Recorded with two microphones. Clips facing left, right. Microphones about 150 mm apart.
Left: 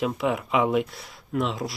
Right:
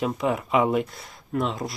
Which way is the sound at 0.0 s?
Centre (ahead or behind).